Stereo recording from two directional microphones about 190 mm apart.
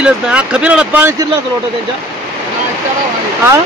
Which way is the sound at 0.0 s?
5° right (ahead or behind).